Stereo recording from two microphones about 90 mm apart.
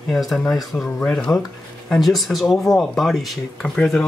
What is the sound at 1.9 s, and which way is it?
Speech, centre (ahead or behind).